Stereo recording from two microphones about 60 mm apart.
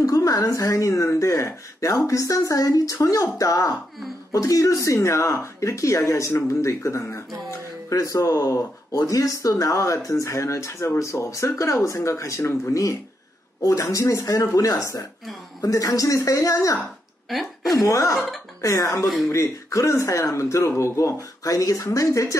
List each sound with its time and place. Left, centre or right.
0.0 s speech: left
2.0 s speech: left
7.9 s speech: left
13.6 s speech: left
19.0 s speech: centre
19.3 s speech: left